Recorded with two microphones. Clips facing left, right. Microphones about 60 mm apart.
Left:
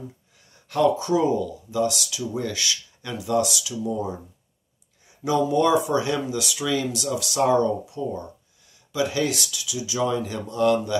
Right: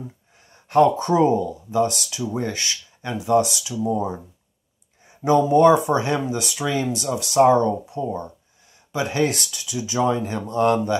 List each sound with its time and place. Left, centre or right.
0.5 s speech: right